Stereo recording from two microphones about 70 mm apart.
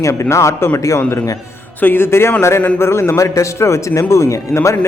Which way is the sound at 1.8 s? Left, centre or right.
Left.